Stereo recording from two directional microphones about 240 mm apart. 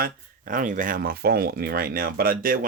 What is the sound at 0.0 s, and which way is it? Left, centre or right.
Speech, right.